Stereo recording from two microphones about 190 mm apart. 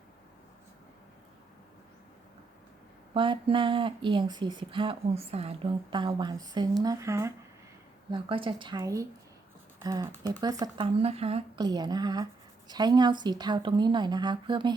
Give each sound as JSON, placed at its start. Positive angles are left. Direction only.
{"t": 3.2, "sound": "speech", "side_deg": -25}
{"t": 8.1, "sound": "speech", "side_deg": -25}
{"t": 11.0, "sound": "speech", "side_deg": -30}